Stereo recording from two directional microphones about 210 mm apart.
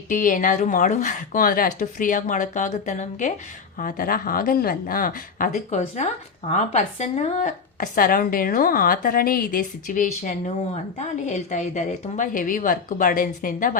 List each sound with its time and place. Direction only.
0.1 s a woman's voice: 40° left (ahead or behind)